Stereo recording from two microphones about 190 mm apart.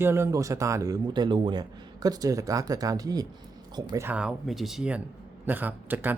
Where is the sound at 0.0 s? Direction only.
15° right (ahead or behind).